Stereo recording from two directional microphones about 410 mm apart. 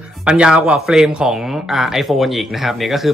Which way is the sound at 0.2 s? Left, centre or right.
Centre.